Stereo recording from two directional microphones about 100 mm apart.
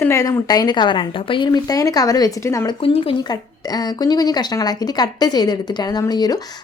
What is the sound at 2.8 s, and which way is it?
Speech, 70° left (ahead or behind).